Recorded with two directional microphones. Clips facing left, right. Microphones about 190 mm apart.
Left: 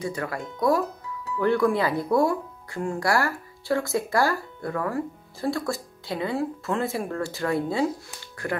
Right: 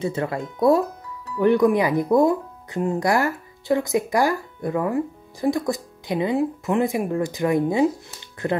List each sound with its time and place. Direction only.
0.0 s speech: 25° right (ahead or behind)